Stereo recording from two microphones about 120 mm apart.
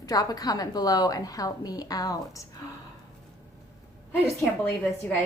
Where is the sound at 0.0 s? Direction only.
30° left (ahead or behind).